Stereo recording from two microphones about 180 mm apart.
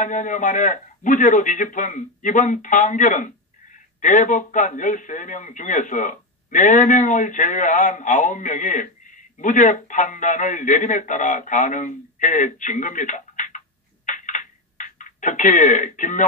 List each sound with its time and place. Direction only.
0.0 s a man's voice: 45° left (ahead or behind)
14.0 s telephone: 45° left (ahead or behind)